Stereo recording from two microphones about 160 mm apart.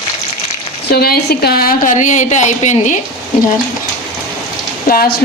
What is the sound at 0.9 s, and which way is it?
A woman's voice, 75° left (ahead or behind).